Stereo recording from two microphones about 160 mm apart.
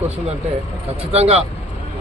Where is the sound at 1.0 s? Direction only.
40° right (ahead or behind).